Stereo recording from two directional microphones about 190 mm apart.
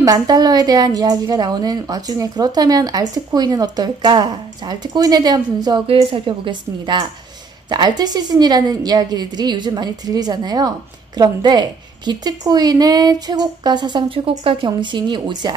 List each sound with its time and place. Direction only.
0.0 s a woman's voice: 20° right (ahead or behind)